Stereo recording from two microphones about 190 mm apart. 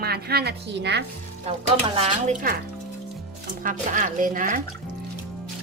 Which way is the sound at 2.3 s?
45° right (ahead or behind).